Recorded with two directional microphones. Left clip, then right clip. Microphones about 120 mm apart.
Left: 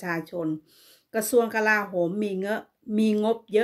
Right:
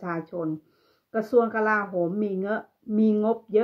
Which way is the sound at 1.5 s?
30° left (ahead or behind).